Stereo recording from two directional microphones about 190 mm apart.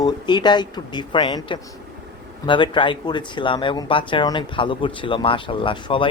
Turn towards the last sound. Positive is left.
turn(degrees=25)  # may be behind; listen again after turning